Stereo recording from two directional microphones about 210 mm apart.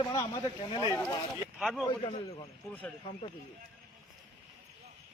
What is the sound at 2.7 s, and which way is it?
Speech, 5° left (ahead or behind).